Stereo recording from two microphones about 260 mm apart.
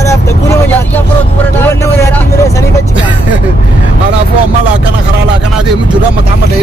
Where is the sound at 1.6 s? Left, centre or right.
Centre.